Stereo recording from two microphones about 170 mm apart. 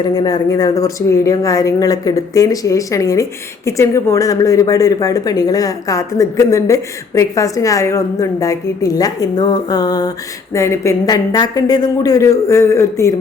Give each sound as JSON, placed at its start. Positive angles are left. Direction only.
{"t": 0.1, "sound": "speech", "side_deg": 20}